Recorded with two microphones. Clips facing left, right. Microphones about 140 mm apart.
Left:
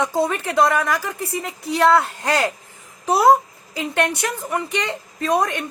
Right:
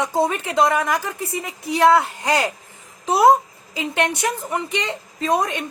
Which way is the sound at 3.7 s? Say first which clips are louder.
Left 1 dB; 20° right (ahead or behind).